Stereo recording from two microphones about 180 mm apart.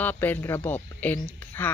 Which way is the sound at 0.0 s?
10° left (ahead or behind).